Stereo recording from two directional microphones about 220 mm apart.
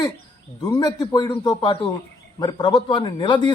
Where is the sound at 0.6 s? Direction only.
20° left (ahead or behind).